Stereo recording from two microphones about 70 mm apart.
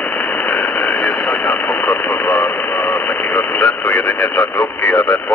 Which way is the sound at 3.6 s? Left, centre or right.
Centre.